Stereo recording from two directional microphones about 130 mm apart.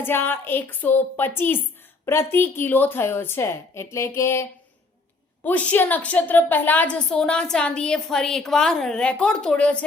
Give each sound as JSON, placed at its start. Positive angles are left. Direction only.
{"t": 0.0, "sound": "a woman's voice", "side_deg": 15}